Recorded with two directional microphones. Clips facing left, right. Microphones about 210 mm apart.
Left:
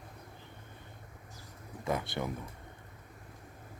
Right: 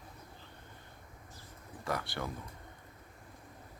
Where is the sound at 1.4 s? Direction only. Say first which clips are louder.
Left 3 dB; 20° left (ahead or behind).